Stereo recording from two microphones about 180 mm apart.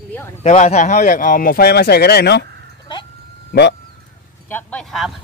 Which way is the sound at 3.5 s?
65° left (ahead or behind).